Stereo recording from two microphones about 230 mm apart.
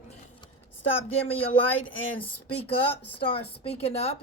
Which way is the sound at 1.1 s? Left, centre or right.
Left.